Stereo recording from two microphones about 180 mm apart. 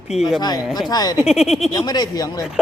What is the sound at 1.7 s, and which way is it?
Speech, 25° left (ahead or behind).